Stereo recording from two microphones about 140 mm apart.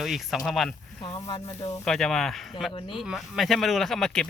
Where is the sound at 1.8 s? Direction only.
Centre (ahead or behind).